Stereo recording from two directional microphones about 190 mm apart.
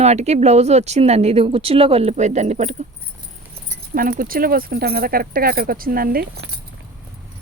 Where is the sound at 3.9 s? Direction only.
50° right (ahead or behind).